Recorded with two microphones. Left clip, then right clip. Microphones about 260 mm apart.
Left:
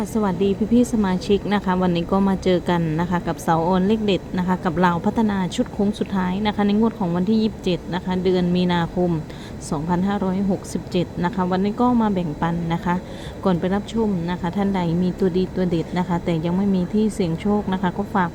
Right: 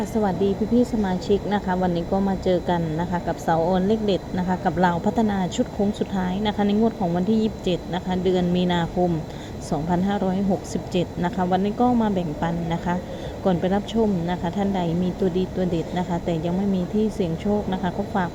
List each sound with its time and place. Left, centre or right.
0.0 s speech: centre